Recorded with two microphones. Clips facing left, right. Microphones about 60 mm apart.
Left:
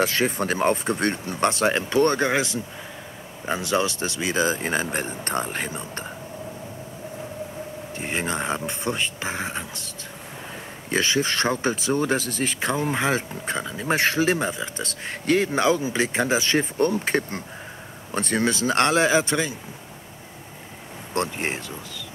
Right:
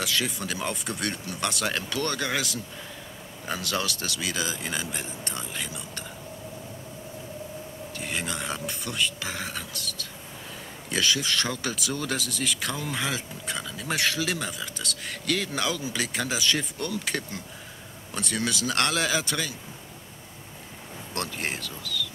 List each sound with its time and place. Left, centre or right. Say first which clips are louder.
0.0 s speech: left 7 dB; left
7.9 s speech: left 5 dB; left
21.1 s speech: left 6 dB; left